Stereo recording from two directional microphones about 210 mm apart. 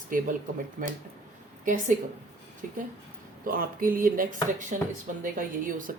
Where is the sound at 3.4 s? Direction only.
40° right (ahead or behind).